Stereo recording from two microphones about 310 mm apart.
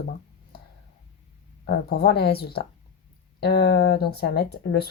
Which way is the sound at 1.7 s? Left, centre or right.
Left.